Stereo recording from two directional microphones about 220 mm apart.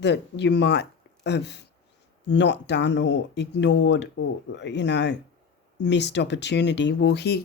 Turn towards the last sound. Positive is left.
turn(degrees=50)  # may be behind; listen again after turning